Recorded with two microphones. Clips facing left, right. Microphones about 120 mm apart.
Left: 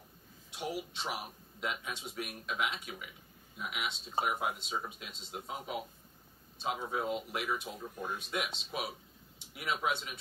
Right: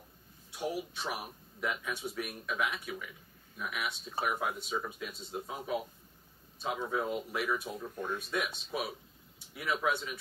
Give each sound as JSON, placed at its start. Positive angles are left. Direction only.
{"t": 0.6, "sound": "speech", "side_deg": 20}
{"t": 7.9, "sound": "speech", "side_deg": 10}
{"t": 8.4, "sound": "speech", "side_deg": 20}